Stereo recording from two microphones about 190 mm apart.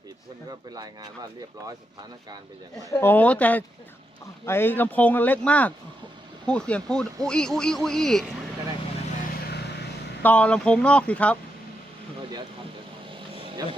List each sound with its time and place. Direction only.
0.7 s speech: 20° right (ahead or behind)
2.7 s speech: 10° left (ahead or behind)
10.2 s speech: 5° left (ahead or behind)
13.3 s vehicle: 30° right (ahead or behind)